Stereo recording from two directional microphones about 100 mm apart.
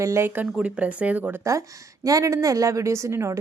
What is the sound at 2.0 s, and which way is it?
A woman's voice, 35° right (ahead or behind).